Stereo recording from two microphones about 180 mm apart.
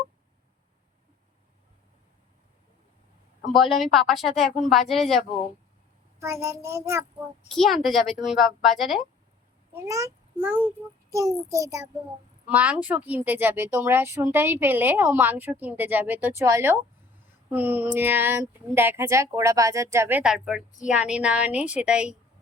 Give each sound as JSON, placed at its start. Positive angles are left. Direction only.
{"t": 3.5, "sound": "speech", "side_deg": 0}
{"t": 6.1, "sound": "speech", "side_deg": -15}
{"t": 7.5, "sound": "speech", "side_deg": 0}
{"t": 9.7, "sound": "a child's voice", "side_deg": -15}